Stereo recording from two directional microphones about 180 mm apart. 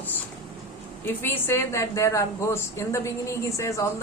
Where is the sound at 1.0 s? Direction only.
10° left (ahead or behind).